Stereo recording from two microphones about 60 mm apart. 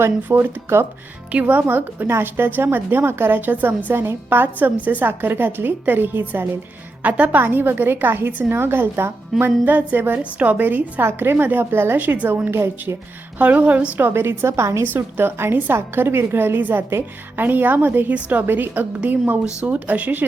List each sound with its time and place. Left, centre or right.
0.3 s a woman's voice: right
1.3 s a woman's voice: right
11.0 s a woman's voice: right
12.5 s a woman's voice: right
13.4 s a woman's voice: right
14.1 s a woman's voice: right
14.8 s a woman's voice: right